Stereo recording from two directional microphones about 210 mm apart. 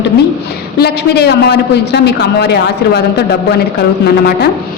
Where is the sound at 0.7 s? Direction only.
50° left (ahead or behind).